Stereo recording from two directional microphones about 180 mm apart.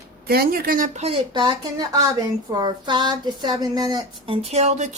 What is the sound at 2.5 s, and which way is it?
Speech, 25° right (ahead or behind).